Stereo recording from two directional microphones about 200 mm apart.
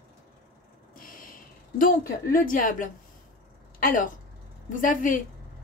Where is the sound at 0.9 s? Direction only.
45° left (ahead or behind).